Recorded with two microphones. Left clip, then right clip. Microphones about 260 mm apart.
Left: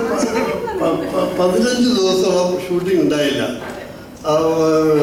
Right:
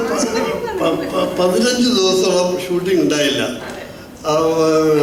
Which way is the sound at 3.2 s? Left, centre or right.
Centre.